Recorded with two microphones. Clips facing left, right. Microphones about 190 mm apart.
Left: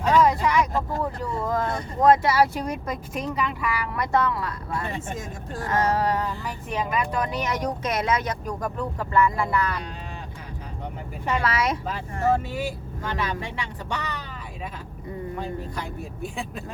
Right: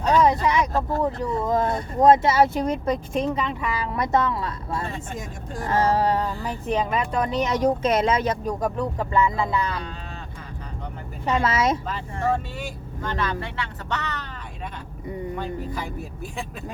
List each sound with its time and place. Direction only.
0.4 s speech: 20° right (ahead or behind)
11.3 s speech: 25° right (ahead or behind)
11.9 s speech: 10° left (ahead or behind)
15.4 s speech: centre (ahead or behind)